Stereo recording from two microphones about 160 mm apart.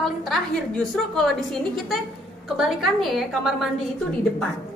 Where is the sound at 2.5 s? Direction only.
Centre (ahead or behind).